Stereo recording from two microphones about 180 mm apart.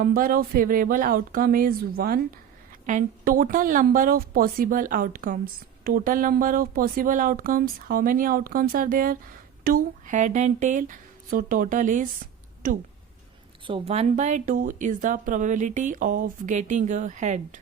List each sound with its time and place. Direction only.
0.0 s a woman's voice: 55° right (ahead or behind)
13.7 s a woman's voice: 30° right (ahead or behind)